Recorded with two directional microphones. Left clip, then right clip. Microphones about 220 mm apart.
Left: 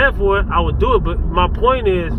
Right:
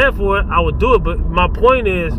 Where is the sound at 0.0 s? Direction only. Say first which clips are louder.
Even; 25° right (ahead or behind).